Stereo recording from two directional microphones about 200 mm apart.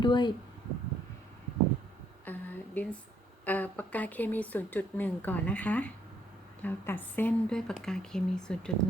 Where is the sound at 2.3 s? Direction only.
10° left (ahead or behind).